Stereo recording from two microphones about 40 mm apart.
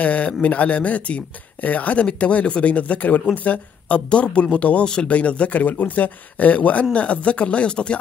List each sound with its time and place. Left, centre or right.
0.0 s speech: left
4.8 s speech: left
5.1 s speech: left